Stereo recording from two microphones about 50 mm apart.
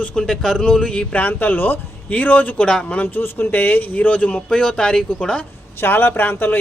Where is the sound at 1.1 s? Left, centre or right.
Left; by 5.4 s centre.